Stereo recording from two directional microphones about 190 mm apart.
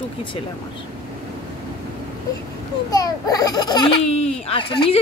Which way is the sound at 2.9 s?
20° left (ahead or behind).